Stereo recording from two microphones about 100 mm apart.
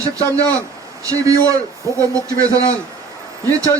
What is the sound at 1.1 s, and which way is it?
A man's voice, 35° right (ahead or behind).